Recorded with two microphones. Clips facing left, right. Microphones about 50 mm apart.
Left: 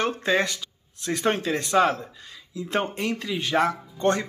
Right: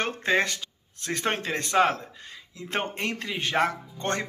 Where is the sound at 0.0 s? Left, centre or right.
Right.